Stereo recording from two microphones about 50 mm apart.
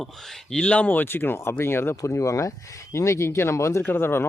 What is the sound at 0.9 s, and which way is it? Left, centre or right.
Speech, left.